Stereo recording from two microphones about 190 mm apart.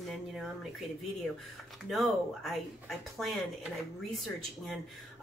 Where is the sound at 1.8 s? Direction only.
Centre (ahead or behind).